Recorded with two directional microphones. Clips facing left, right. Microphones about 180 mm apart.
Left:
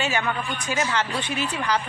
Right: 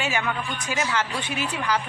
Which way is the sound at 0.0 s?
10° right (ahead or behind).